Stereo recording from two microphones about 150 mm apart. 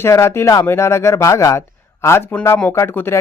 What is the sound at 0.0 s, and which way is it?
Speech, 20° left (ahead or behind).